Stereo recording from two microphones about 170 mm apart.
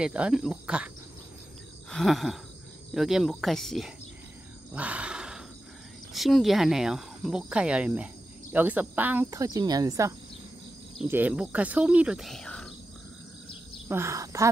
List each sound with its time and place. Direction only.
0.0 s speech: 5° right (ahead or behind)
1.9 s speech: centre (ahead or behind)
4.7 s a sound: 10° right (ahead or behind)
6.1 s speech: centre (ahead or behind); by 10.1 s 20° right (ahead or behind)
11.1 s speech: 10° right (ahead or behind)
13.8 s a woman's voice: 15° right (ahead or behind)